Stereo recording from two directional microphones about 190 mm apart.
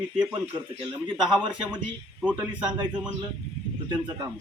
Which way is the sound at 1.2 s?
Centre (ahead or behind).